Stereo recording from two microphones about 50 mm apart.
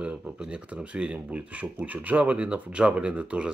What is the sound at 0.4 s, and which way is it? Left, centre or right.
Speech, right.